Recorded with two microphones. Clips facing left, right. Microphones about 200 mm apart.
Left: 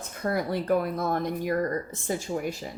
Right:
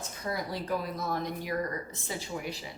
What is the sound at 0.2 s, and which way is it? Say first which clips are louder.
Speech: left 7 dB; 55° left (ahead or behind).